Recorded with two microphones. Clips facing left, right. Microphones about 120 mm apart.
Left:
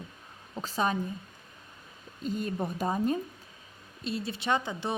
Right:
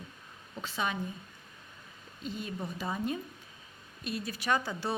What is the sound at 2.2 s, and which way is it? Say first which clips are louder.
Speech: left 6 dB; 45° left (ahead or behind).